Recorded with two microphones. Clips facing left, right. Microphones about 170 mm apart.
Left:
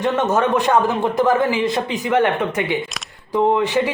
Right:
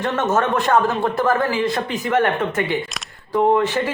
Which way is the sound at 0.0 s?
15° left (ahead or behind).